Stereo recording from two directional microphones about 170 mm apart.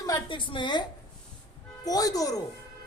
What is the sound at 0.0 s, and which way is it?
A woman's voice, 25° left (ahead or behind).